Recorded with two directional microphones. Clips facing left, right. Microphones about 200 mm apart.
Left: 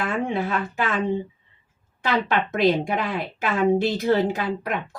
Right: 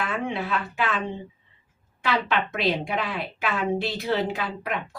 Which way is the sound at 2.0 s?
40° left (ahead or behind).